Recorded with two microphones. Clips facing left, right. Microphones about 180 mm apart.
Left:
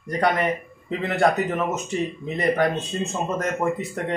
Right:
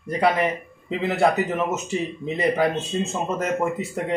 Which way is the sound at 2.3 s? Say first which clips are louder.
Even; 5° right (ahead or behind).